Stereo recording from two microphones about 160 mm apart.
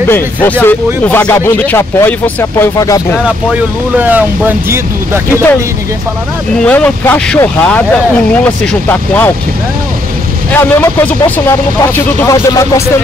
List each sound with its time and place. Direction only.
0.1 s speech: 10° left (ahead or behind)
3.9 s speech: 10° right (ahead or behind)
6.6 s speech: 10° left (ahead or behind)
10.5 s speech: 15° left (ahead or behind)